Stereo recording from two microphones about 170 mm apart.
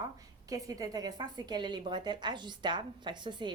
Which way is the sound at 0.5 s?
20° right (ahead or behind).